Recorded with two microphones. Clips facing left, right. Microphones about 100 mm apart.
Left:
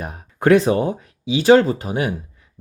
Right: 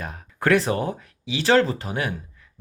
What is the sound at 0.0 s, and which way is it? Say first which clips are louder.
Speech: left 5 dB; 20° left (ahead or behind).